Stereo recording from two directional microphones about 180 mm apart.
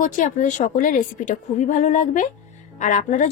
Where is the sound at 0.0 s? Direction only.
45° left (ahead or behind).